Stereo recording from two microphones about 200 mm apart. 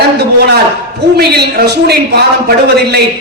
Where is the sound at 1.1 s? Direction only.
55° right (ahead or behind).